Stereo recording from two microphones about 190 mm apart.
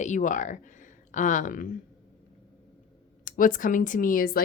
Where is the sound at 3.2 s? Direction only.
45° left (ahead or behind).